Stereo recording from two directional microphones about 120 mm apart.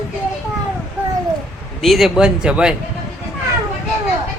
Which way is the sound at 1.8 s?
Centre (ahead or behind).